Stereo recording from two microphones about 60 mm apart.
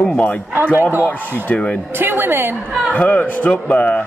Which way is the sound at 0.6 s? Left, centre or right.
Right.